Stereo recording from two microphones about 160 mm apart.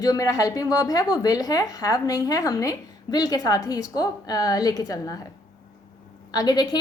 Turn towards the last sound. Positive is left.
turn(degrees=25)  # may be behind; listen again after turning